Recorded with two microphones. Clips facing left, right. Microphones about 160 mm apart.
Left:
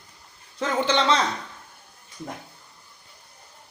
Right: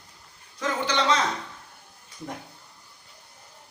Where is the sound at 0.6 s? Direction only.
25° left (ahead or behind).